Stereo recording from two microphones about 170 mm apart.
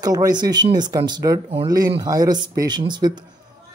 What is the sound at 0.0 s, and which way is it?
Speech, 20° right (ahead or behind).